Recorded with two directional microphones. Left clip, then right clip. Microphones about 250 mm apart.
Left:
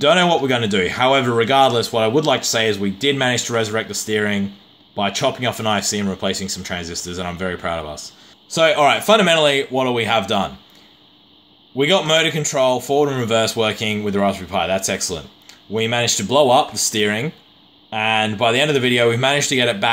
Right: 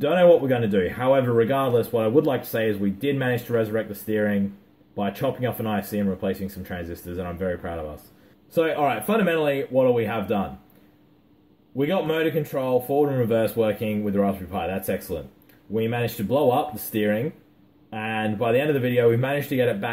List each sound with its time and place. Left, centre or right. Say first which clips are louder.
0.0 s speech: left 2 dB; left
11.7 s speech: left 8 dB; left